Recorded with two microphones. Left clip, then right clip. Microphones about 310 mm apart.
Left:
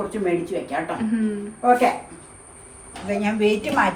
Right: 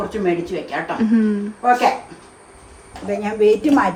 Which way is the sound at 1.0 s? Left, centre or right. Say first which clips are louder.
Right 7 dB; centre.